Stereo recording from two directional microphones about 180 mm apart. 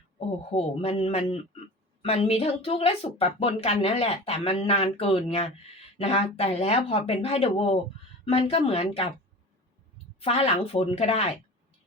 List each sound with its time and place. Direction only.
0.5 s speech: 35° left (ahead or behind)
10.2 s speech: 35° left (ahead or behind)